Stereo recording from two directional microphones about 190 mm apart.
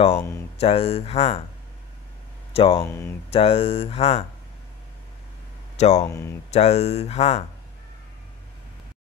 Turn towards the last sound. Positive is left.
turn(degrees=35)  # may be behind; listen again after turning